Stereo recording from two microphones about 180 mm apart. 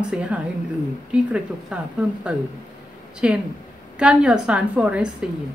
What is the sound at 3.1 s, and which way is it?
Speech, 5° right (ahead or behind).